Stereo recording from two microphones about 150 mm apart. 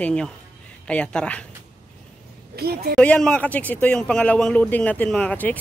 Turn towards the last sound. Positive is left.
turn(degrees=10)  # may be behind; listen again after turning